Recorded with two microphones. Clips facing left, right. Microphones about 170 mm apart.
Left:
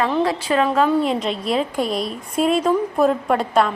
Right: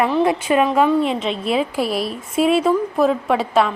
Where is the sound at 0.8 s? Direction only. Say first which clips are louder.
Right 1 dB; centre (ahead or behind).